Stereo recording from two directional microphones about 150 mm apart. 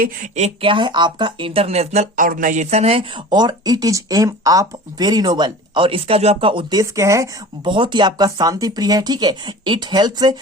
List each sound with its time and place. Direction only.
0.0 s speech: 55° right (ahead or behind)
2.2 s speech: 65° right (ahead or behind); by 7.7 s 20° right (ahead or behind)
7.7 s speech: 30° right (ahead or behind)